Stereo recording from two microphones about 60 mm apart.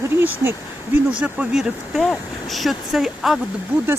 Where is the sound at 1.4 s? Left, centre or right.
Right.